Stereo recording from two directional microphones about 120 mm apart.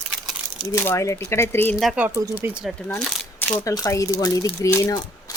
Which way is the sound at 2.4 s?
10° right (ahead or behind).